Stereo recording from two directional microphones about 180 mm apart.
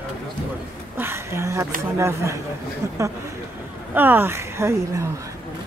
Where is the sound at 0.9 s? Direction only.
15° right (ahead or behind).